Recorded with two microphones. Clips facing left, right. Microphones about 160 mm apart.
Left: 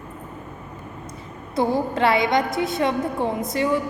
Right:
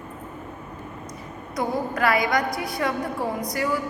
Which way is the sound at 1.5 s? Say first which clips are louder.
Left 4 dB; 30° left (ahead or behind).